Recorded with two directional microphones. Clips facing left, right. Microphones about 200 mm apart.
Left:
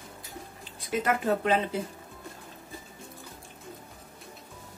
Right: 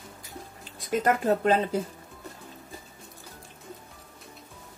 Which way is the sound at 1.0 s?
40° right (ahead or behind).